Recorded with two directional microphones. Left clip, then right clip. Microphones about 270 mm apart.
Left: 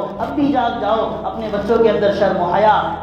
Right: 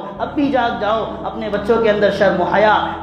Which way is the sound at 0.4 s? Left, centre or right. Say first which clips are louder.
Right 1 dB; right.